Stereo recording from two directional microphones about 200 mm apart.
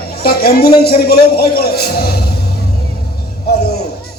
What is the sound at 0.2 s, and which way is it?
A man's voice, 50° left (ahead or behind).